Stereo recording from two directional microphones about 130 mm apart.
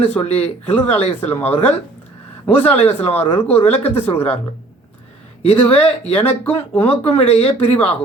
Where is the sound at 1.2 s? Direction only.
15° left (ahead or behind).